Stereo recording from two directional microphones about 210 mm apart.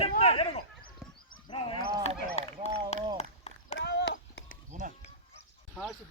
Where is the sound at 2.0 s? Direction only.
30° left (ahead or behind).